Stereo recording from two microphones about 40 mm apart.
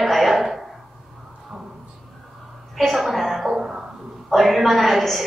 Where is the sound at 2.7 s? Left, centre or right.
Centre.